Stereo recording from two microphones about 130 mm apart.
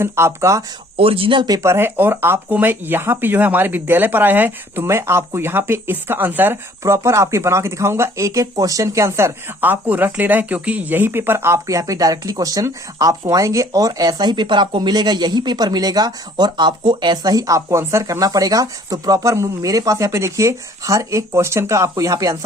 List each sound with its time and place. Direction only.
0.0 s speech: 20° right (ahead or behind)
0.9 s speech: 45° right (ahead or behind); by 22.4 s 25° right (ahead or behind)